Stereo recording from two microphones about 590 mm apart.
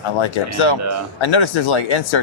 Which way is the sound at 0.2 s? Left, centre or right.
Left.